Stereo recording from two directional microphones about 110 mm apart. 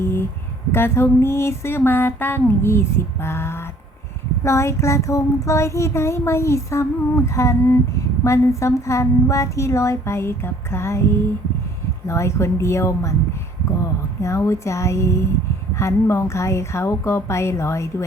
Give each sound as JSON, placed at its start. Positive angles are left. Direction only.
{"t": 0.0, "sound": "a sound", "side_deg": 20}
{"t": 0.7, "sound": "speech", "side_deg": 20}
{"t": 12.0, "sound": "speech", "side_deg": 25}